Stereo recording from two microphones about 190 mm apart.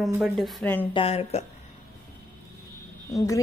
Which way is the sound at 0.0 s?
Centre (ahead or behind).